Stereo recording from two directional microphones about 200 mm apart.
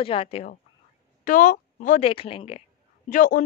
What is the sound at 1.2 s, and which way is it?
Speech, 40° left (ahead or behind).